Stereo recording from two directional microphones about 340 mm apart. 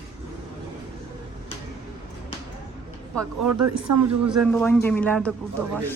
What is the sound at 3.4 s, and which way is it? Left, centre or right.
Speech, right.